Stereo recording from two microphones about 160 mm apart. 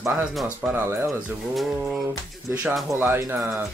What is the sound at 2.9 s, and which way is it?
Speech, 15° right (ahead or behind).